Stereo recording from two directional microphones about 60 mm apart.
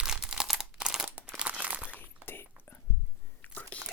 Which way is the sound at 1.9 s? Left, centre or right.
Left.